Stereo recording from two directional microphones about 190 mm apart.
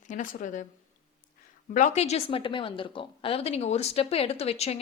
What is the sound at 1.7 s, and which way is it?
A woman's voice, 40° left (ahead or behind).